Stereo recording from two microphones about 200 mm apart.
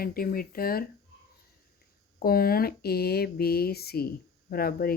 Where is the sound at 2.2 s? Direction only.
50° left (ahead or behind).